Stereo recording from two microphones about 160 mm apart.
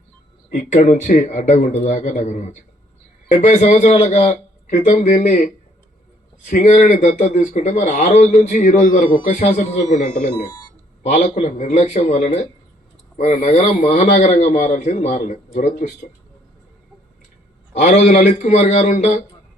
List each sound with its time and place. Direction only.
0.5 s a man's voice: 50° left (ahead or behind)
6.6 s a man's voice: 45° left (ahead or behind)
17.7 s a man's voice: 45° left (ahead or behind)